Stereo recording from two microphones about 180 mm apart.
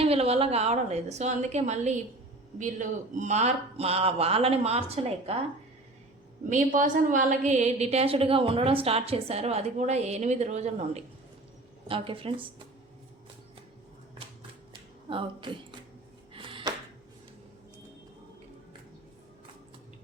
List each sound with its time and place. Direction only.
0.0 s a woman's voice: 35° right (ahead or behind)
6.5 s a woman's voice: 45° right (ahead or behind); by 12.5 s 30° right (ahead or behind)
14.7 s a sound: 25° right (ahead or behind)